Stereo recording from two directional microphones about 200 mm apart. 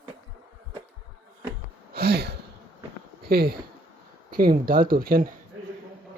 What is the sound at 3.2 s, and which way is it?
Speech, 50° right (ahead or behind).